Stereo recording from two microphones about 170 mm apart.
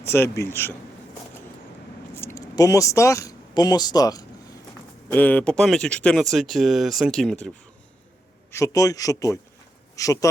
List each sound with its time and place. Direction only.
0.0 s a man's voice: 15° left (ahead or behind)
2.1 s speech: 15° left (ahead or behind)
5.1 s speech: 10° left (ahead or behind)
8.5 s speech: 20° left (ahead or behind)